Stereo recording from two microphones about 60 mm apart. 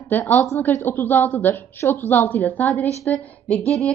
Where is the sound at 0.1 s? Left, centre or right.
Left.